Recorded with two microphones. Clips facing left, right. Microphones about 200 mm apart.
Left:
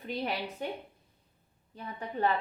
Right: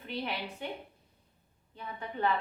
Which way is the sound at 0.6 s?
40° left (ahead or behind).